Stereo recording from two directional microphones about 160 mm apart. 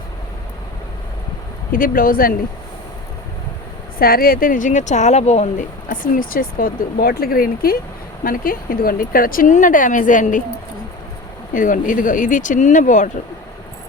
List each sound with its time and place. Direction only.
1.7 s speech: 60° left (ahead or behind)
3.9 s speech: 65° left (ahead or behind)
11.5 s speech: 55° left (ahead or behind)